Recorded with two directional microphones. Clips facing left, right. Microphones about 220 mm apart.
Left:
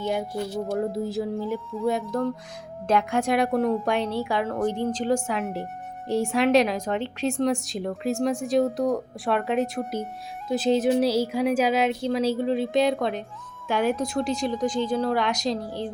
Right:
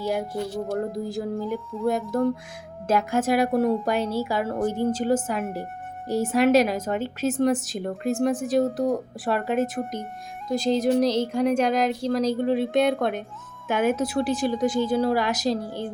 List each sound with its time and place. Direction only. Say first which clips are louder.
0.0 s a woman's voice: right 1 dB; 5° right (ahead or behind)